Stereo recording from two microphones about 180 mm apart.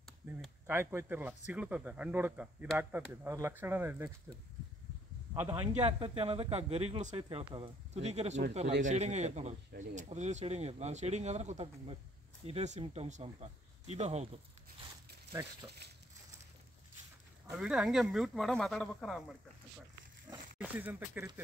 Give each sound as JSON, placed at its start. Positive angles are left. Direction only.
{"t": 0.2, "sound": "a sound", "side_deg": -10}
{"t": 0.7, "sound": "speech", "side_deg": -15}
{"t": 5.7, "sound": "speech", "side_deg": -35}
{"t": 17.5, "sound": "speech", "side_deg": -5}
{"t": 20.5, "sound": "speech", "side_deg": -10}